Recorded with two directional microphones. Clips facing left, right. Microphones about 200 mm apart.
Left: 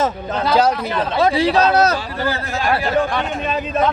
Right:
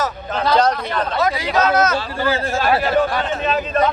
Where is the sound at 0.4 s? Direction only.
5° left (ahead or behind).